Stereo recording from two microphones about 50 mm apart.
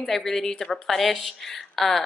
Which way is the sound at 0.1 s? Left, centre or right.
Centre.